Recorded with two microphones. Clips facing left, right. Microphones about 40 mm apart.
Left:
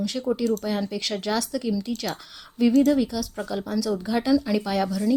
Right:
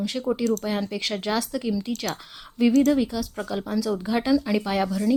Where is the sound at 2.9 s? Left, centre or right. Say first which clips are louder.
Even; centre.